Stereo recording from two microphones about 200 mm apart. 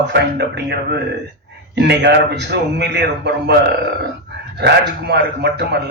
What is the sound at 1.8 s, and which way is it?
Speech, 60° right (ahead or behind).